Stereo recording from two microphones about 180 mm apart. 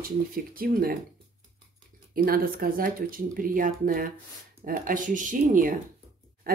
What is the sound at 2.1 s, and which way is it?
A woman's voice, 55° right (ahead or behind).